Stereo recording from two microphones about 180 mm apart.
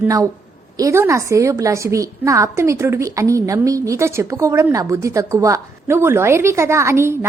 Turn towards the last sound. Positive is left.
turn(degrees=-15)  # may be behind; listen again after turning